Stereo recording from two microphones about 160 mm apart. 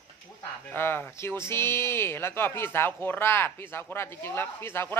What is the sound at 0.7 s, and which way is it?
Speech, 15° left (ahead or behind).